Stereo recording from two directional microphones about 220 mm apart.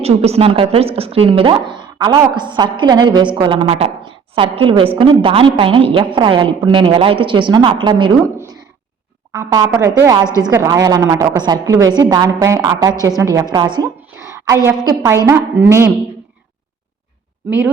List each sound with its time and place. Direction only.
0.0 s a woman's voice: 30° right (ahead or behind)
9.3 s a woman's voice: 15° right (ahead or behind)